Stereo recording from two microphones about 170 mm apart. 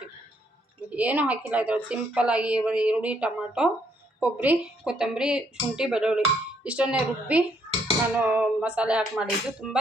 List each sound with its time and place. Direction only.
0.9 s a woman's voice: 10° right (ahead or behind)